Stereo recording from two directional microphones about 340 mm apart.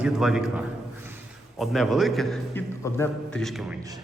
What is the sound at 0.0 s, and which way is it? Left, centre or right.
A man's voice, centre.